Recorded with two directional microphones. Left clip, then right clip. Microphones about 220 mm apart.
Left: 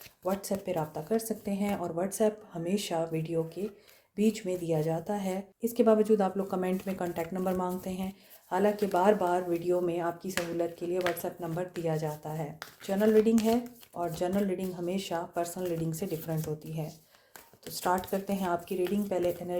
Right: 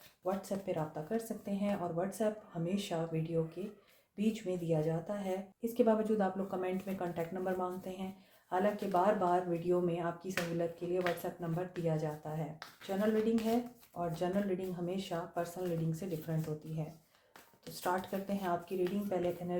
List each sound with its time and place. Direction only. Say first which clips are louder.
0.3 s speech: left 5 dB; 45° left (ahead or behind)
17.7 s speech: left 6 dB; 45° left (ahead or behind)